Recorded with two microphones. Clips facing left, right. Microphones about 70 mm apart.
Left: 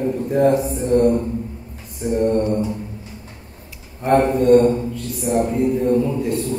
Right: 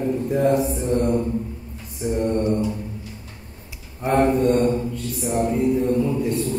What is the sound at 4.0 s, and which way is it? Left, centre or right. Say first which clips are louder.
A man's voice: left 2 dB; centre.